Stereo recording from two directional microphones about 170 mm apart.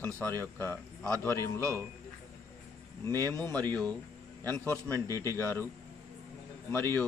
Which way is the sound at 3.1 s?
20° right (ahead or behind).